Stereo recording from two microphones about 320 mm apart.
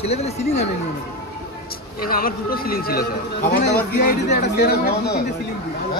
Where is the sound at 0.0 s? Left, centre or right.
Centre.